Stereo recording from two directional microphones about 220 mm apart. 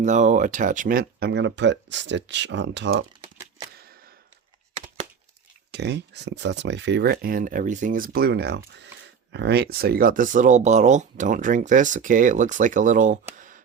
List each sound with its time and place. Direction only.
0.0 s speech: 35° right (ahead or behind); by 3.0 s 55° right (ahead or behind)
3.3 s a sound: 15° right (ahead or behind)
5.7 s speech: 50° right (ahead or behind); by 13.1 s 35° right (ahead or behind)